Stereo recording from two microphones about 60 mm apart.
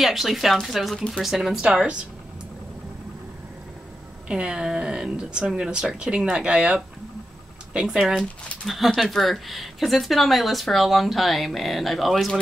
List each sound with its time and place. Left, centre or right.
0.0 s speech: centre
4.3 s speech: centre
8.6 s speech: centre